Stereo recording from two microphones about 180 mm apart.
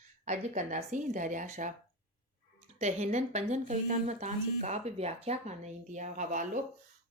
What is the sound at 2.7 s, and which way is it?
Speech, 40° right (ahead or behind).